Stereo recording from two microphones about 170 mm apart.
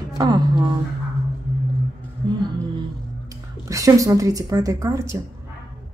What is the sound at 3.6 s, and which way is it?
A woman's voice, 20° right (ahead or behind).